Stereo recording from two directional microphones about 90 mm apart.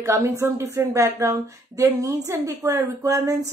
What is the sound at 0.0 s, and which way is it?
Speech, 30° right (ahead or behind).